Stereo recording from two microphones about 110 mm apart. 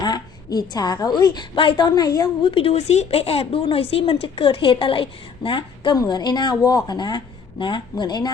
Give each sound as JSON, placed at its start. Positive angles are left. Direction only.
{"t": 0.0, "sound": "a woman's voice", "side_deg": 40}
{"t": 2.4, "sound": "a woman's voice", "side_deg": 55}